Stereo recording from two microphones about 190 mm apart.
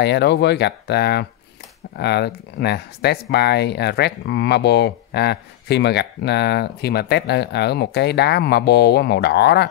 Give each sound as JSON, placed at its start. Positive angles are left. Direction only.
{"t": 0.0, "sound": "speech", "side_deg": 60}